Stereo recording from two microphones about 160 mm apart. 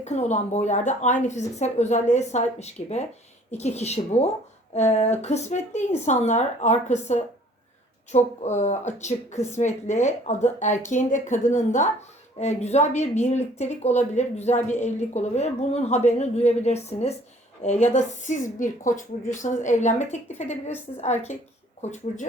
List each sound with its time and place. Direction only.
0.0 s speech: 45° left (ahead or behind)